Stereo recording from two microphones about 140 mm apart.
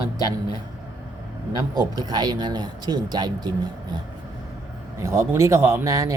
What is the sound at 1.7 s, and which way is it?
Speech, 30° right (ahead or behind).